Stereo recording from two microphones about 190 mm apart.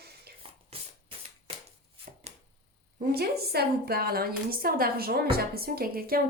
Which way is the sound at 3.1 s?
55° right (ahead or behind).